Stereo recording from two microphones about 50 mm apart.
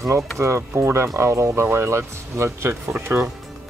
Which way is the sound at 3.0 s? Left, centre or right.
Right.